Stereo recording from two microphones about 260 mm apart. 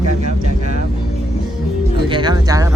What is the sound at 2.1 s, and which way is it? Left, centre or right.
Speech, centre.